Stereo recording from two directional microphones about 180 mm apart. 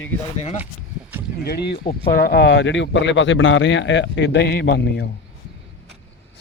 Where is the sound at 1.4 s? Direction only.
60° left (ahead or behind).